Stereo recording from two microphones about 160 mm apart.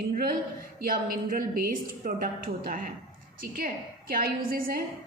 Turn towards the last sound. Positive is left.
turn(degrees=-65)  # may be behind; listen again after turning